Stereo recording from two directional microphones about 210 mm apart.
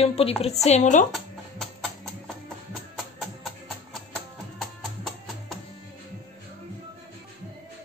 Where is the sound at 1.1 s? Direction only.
Centre (ahead or behind).